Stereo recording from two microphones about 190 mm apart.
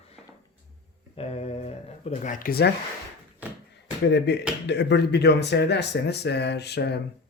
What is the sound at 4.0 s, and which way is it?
Speech, 65° left (ahead or behind).